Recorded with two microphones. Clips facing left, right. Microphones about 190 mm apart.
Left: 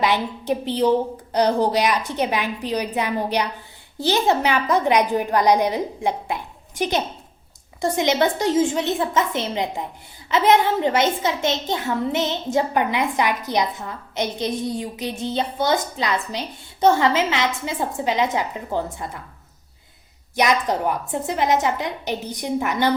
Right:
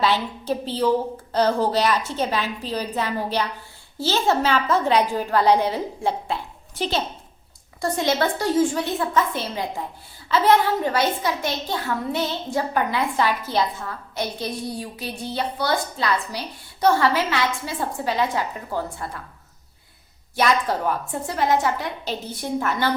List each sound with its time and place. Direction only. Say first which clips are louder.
0.0 s a woman's voice: left 1 dB; 15° left (ahead or behind)
20.3 s a woman's voice: left 1 dB; 15° left (ahead or behind)